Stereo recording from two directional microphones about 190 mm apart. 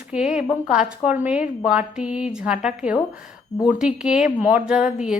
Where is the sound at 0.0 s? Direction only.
5° right (ahead or behind).